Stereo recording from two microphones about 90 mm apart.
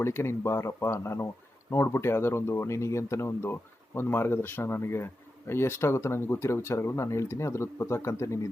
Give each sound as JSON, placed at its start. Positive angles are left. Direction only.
{"t": 0.0, "sound": "speech", "side_deg": 30}